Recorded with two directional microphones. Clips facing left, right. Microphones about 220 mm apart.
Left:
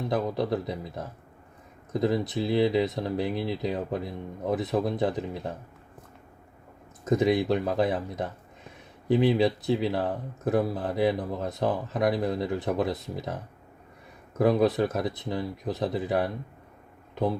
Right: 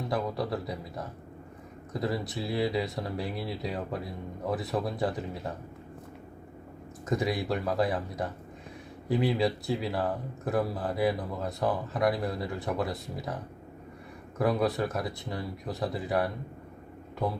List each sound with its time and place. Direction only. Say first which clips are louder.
0.1 s speech: left 4 dB; 20° left (ahead or behind)
7.1 s speech: left 6 dB; 20° left (ahead or behind)
14.3 s speech: left 5 dB; 20° left (ahead or behind)